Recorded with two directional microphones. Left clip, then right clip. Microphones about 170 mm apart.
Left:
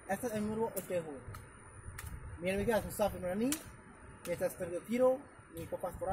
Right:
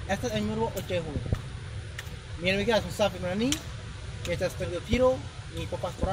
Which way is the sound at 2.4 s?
20° left (ahead or behind).